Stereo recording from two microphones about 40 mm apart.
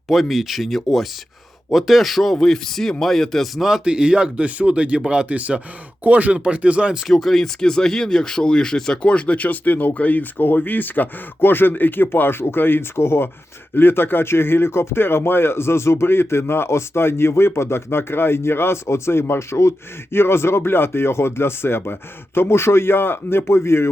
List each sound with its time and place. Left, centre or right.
0.1 s speech: centre
3.5 s speech: centre
3.8 s speech: right
4.4 s speech: right
6.3 s speech: right
7.1 s speech: centre
7.6 s speech: centre; by 13.3 s left
13.7 s a man's voice: left
22.4 s a man's voice: left